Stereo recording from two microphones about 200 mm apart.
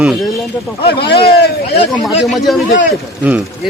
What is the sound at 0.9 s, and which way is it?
Speech, 55° left (ahead or behind).